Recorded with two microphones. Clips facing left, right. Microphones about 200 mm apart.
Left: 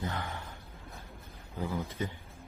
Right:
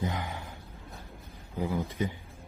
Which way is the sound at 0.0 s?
15° right (ahead or behind).